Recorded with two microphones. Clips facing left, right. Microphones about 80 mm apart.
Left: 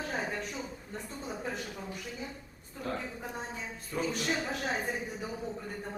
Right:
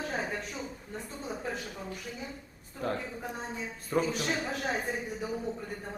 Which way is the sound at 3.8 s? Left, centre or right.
Right.